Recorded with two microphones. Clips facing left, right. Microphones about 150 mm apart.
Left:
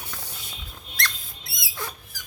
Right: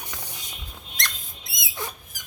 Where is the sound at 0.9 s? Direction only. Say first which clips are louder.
Left 3 dB; 20° right (ahead or behind).